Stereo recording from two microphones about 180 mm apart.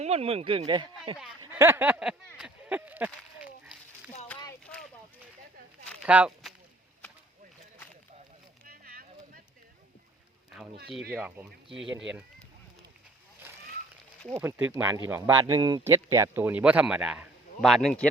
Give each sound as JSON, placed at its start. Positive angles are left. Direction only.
{"t": 0.0, "sound": "speech", "side_deg": -35}
{"t": 1.4, "sound": "a sound", "side_deg": -15}
{"t": 4.6, "sound": "a sound", "side_deg": 5}
{"t": 6.1, "sound": "speech", "side_deg": -5}
{"t": 8.6, "sound": "clip-clop", "side_deg": -55}
{"t": 11.1, "sound": "speech", "side_deg": -10}
{"t": 14.3, "sound": "speech", "side_deg": -15}